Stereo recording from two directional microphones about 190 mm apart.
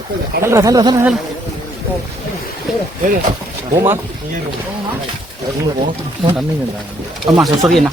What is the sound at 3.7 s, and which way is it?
Speech, 15° right (ahead or behind).